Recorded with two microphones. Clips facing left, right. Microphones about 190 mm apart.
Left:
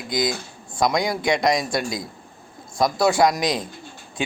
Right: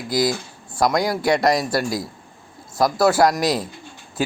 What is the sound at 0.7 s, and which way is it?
A man's voice, 5° right (ahead or behind).